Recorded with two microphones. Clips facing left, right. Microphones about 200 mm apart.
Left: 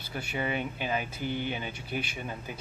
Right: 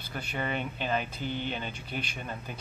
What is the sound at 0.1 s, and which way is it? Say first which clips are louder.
Speech: left 1 dB; 10° left (ahead or behind).